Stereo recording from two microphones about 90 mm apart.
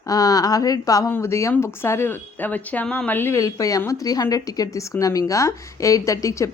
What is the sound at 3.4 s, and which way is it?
Speech, 40° left (ahead or behind).